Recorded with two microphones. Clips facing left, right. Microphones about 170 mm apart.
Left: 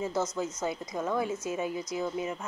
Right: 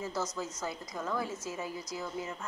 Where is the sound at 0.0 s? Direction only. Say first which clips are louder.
Left 5 dB; 20° left (ahead or behind).